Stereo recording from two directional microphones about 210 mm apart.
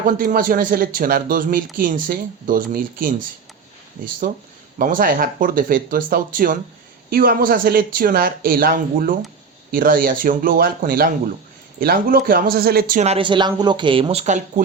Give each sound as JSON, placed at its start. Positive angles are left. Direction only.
{"t": 0.2, "sound": "speech", "side_deg": -40}
{"t": 4.2, "sound": "speech", "side_deg": -45}